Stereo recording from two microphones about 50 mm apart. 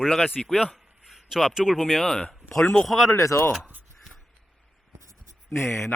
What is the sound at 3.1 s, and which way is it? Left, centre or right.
Speech, left.